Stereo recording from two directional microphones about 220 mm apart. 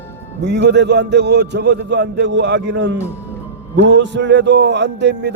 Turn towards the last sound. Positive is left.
turn(degrees=-50)  # may be behind; listen again after turning